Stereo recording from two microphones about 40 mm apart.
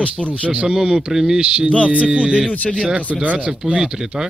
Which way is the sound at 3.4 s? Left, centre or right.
Right.